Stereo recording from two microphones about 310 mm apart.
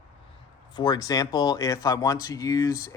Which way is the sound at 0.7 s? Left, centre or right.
Centre.